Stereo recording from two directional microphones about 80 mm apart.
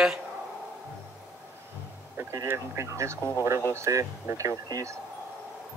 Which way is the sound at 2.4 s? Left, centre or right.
Right.